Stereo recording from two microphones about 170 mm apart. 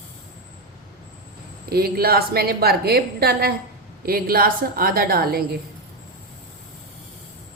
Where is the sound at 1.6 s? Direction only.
65° right (ahead or behind).